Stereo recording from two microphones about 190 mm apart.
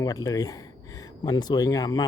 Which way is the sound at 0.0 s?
20° left (ahead or behind).